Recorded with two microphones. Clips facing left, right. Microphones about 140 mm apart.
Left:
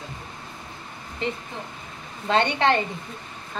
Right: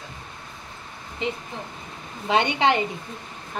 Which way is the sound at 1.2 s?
15° right (ahead or behind).